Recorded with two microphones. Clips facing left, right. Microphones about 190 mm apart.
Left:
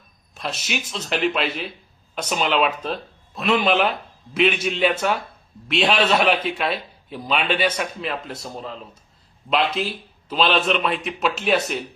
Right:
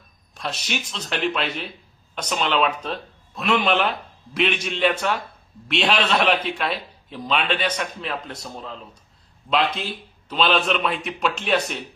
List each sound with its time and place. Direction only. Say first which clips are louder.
0.3 s a man's voice: left 1 dB; 5° left (ahead or behind)